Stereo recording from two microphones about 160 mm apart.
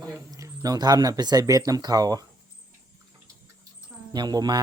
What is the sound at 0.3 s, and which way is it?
Speech, 20° right (ahead or behind).